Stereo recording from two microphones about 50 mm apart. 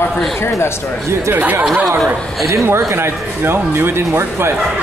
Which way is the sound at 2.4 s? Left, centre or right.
Right.